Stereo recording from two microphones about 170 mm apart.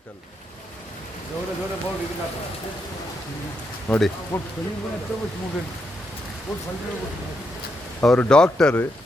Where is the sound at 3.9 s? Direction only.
Centre (ahead or behind).